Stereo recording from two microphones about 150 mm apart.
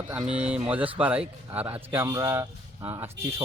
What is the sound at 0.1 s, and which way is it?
A man's voice, 5° right (ahead or behind).